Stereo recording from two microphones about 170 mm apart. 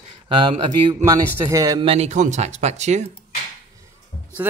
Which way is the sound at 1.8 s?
35° right (ahead or behind).